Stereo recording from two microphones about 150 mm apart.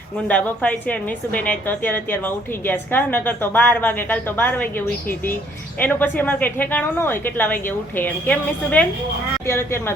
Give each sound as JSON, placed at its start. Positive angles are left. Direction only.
{"t": 0.3, "sound": "a woman's voice", "side_deg": 10}